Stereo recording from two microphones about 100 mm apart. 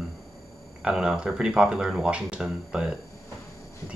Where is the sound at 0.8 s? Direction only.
10° right (ahead or behind).